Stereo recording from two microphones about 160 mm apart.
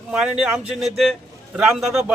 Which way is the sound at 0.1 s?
Centre (ahead or behind).